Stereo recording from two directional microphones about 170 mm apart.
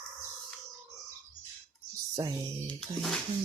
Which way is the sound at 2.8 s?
5° left (ahead or behind).